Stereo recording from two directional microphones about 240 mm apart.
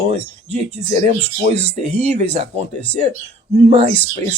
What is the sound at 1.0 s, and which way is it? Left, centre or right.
Speech, right.